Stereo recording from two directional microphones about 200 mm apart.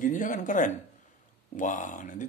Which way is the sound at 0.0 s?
40° left (ahead or behind).